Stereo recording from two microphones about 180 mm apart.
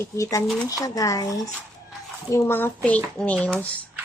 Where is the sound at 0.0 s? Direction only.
20° left (ahead or behind).